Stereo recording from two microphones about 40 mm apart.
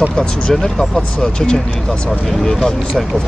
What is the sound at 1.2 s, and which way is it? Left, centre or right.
Speech, left.